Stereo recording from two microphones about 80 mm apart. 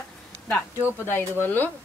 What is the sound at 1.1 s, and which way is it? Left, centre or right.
Speech, left.